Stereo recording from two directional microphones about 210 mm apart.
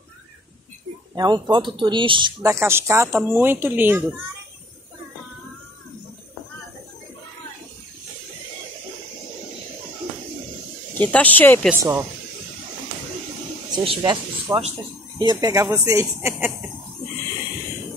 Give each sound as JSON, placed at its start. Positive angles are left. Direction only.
{"t": 1.1, "sound": "speech", "side_deg": -20}
{"t": 11.0, "sound": "speech", "side_deg": 5}
{"t": 11.7, "sound": "speech", "side_deg": -15}
{"t": 13.7, "sound": "speech", "side_deg": -20}